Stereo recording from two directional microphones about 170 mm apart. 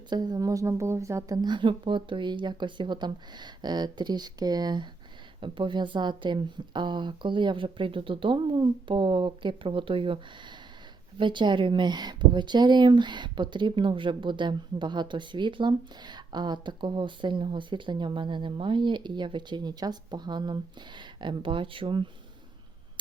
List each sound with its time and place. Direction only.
0.1 s speech: 25° right (ahead or behind)